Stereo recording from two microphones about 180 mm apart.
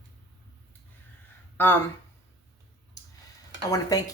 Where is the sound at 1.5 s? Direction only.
10° left (ahead or behind).